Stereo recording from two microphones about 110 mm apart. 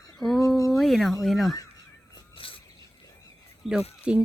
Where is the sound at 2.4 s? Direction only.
55° left (ahead or behind).